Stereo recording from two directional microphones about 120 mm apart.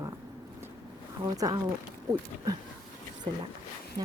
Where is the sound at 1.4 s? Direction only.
30° right (ahead or behind).